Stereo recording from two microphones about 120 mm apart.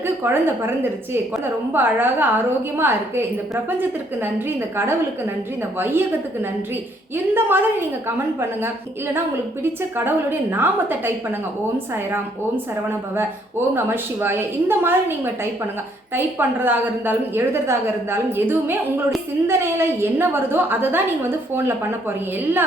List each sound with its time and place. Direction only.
0.2 s a woman's voice: 20° right (ahead or behind)
7.3 s a woman's voice: 15° right (ahead or behind)
10.5 s a woman's voice: 15° right (ahead or behind)
13.7 s a woman's voice: 20° right (ahead or behind)